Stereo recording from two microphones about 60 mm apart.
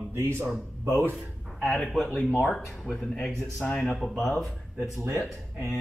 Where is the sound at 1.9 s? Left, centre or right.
Centre.